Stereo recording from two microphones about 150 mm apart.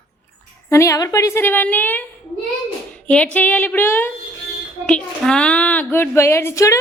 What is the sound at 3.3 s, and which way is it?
A woman's voice, 10° left (ahead or behind).